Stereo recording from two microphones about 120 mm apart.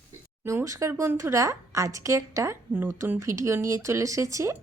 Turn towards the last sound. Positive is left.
turn(degrees=-25)  # may be behind; listen again after turning